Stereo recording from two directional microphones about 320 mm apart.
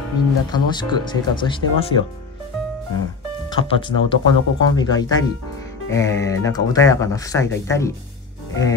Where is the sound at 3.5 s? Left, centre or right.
Centre.